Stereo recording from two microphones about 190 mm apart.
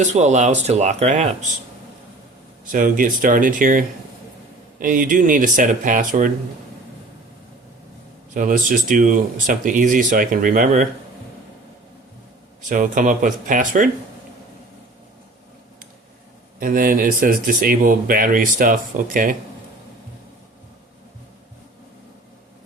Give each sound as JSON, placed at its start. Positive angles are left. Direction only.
{"t": 0.0, "sound": "speech", "side_deg": -35}
{"t": 2.7, "sound": "speech", "side_deg": -45}
{"t": 8.4, "sound": "speech", "side_deg": -45}
{"t": 12.6, "sound": "speech", "side_deg": -45}
{"t": 16.6, "sound": "speech", "side_deg": -50}